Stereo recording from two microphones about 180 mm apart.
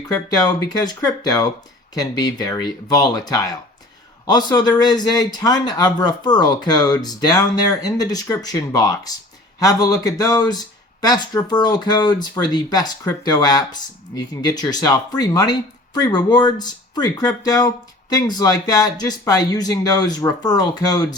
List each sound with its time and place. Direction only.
0.3 s speech: 20° left (ahead or behind)